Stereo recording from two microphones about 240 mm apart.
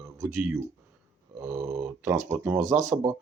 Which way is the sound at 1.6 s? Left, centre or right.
Right.